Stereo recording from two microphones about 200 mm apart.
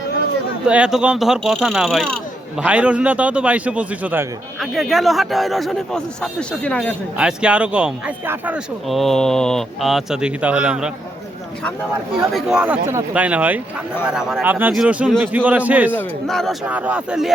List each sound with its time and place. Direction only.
0.7 s a man's voice: 5° right (ahead or behind)
12.3 s a man's voice: centre (ahead or behind)
15.9 s speech: 5° left (ahead or behind)